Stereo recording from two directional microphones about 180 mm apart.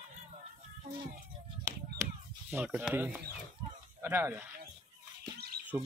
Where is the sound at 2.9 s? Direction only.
5° right (ahead or behind).